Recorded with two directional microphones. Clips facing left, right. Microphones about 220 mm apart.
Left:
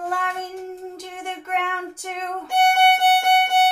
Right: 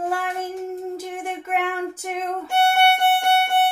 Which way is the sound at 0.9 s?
5° right (ahead or behind).